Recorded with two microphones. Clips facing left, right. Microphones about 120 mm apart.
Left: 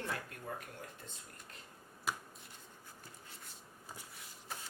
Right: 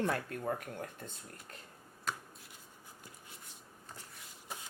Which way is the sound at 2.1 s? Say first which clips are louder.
Even; 10° left (ahead or behind).